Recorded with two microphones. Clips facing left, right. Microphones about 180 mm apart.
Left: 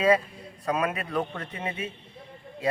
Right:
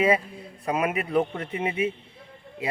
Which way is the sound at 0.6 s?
20° right (ahead or behind).